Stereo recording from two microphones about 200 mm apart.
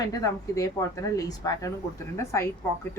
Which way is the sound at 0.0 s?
15° left (ahead or behind).